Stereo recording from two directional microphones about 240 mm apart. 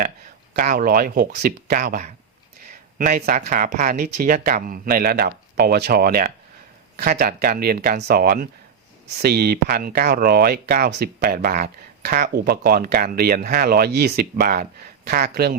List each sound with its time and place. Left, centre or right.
0.5 s speech: right